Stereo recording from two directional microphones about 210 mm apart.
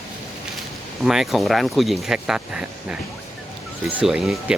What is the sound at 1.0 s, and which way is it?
Speech, centre (ahead or behind).